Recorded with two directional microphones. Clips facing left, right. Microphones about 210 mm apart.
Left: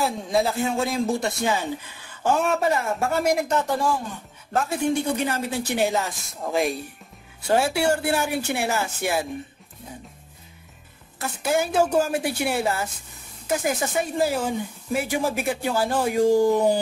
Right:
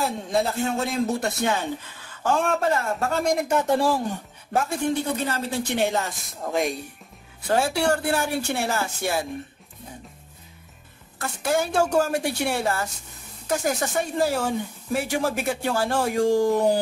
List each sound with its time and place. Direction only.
0.0 s a man's voice: centre (ahead or behind)
3.6 s speech: 30° right (ahead or behind)
4.6 s a man's voice: 10° left (ahead or behind)
7.4 s speech: 20° left (ahead or behind)
7.7 s a man's voice: 5° left (ahead or behind)
8.6 s a man's voice: 15° left (ahead or behind)
11.1 s speech: centre (ahead or behind)